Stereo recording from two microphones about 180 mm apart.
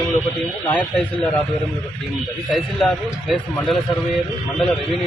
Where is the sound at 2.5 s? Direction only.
Centre (ahead or behind).